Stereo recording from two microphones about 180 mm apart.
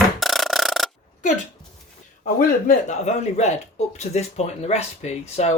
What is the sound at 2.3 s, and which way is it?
Speech, 45° left (ahead or behind).